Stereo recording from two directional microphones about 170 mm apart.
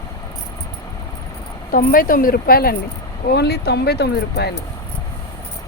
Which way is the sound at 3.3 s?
70° left (ahead or behind).